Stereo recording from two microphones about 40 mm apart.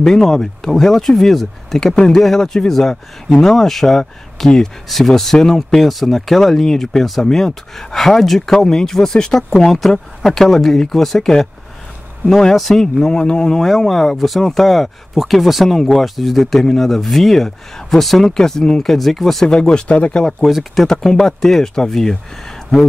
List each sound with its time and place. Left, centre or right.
0.0 s speech: centre
12.5 s speech: centre
13.7 s speech: centre
19.4 s speech: centre
19.9 s speech: left
20.4 s speech: centre
20.8 s speech: centre